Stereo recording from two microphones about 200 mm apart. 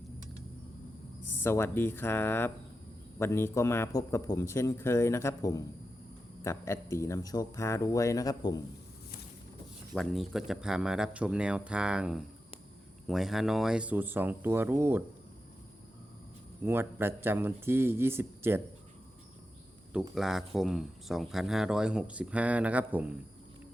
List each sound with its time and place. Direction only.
1.2 s a man's voice: 10° left (ahead or behind)
9.9 s speech: centre (ahead or behind)
16.6 s speech: 10° right (ahead or behind)
19.9 s speech: 5° right (ahead or behind)